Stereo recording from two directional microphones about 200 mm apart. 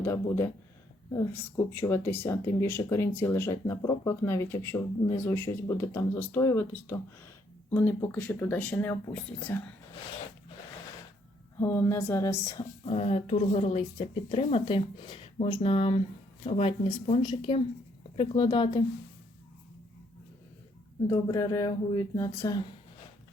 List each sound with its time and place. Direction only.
0.0 s speech: 10° left (ahead or behind)
11.6 s speech: 10° left (ahead or behind)
12.8 s speech: 30° left (ahead or behind)
21.1 s speech: 15° left (ahead or behind)